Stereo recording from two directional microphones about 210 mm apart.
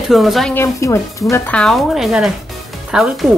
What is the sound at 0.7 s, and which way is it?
Speech, 15° left (ahead or behind).